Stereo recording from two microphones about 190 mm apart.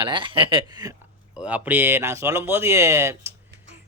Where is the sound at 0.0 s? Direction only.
25° right (ahead or behind).